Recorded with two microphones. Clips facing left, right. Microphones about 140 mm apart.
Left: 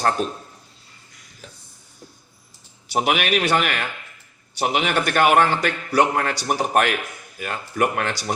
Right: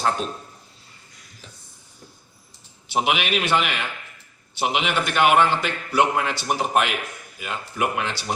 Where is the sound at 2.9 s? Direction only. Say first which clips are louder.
Left 2 dB; 45° left (ahead or behind).